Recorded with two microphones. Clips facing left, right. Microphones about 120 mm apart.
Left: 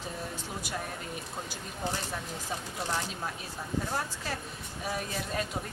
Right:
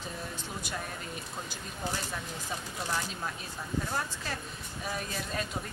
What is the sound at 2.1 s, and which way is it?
Speech, 35° left (ahead or behind).